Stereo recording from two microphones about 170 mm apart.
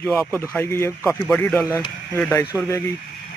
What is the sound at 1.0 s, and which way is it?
Speech, 5° left (ahead or behind).